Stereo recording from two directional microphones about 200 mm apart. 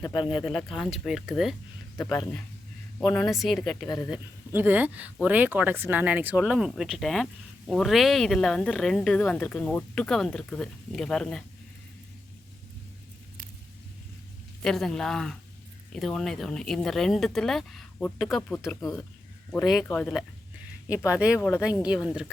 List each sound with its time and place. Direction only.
0.0 s speech: 20° left (ahead or behind)
0.3 s speech: centre (ahead or behind)
2.0 s speech: 15° left (ahead or behind)
3.0 s speech: centre (ahead or behind)
3.8 s speech: 20° left (ahead or behind)
4.1 s speech: 10° right (ahead or behind)
14.6 s speech: centre (ahead or behind)
19.5 s speech: centre (ahead or behind)
21.0 s speech: 5° right (ahead or behind)
21.3 s speech: 10° left (ahead or behind)
21.8 s speech: 5° right (ahead or behind)